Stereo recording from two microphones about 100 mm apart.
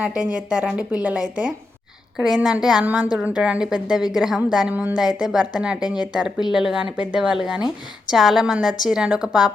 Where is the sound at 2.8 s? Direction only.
15° right (ahead or behind).